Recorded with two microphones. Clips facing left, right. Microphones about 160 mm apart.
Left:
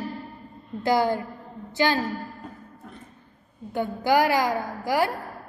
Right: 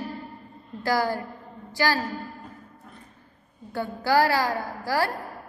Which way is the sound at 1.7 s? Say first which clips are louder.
Left 2 dB; 20° left (ahead or behind).